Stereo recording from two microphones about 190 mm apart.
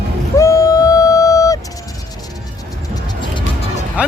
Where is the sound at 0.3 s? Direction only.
15° left (ahead or behind).